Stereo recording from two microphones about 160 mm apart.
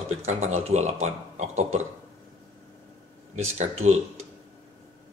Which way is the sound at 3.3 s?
45° right (ahead or behind).